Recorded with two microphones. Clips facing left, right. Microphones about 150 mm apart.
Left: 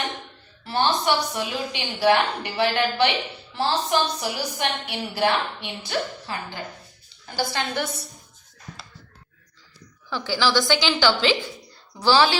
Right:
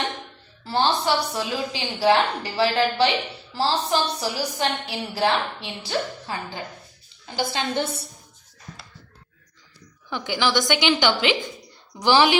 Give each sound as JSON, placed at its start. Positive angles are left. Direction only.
{"t": 0.6, "sound": "a sound", "side_deg": -25}
{"t": 1.0, "sound": "a woman's voice", "side_deg": -35}
{"t": 7.3, "sound": "a woman's voice", "side_deg": -20}
{"t": 10.1, "sound": "a woman's voice", "side_deg": -20}